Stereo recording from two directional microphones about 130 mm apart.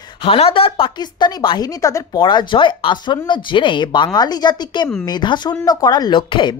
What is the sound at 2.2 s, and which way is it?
Speech, 35° left (ahead or behind).